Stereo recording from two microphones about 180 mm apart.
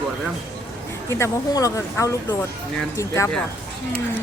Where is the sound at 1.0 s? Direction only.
15° left (ahead or behind).